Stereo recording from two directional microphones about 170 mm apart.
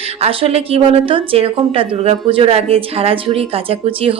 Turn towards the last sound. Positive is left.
turn(degrees=-35)  # may be behind; listen again after turning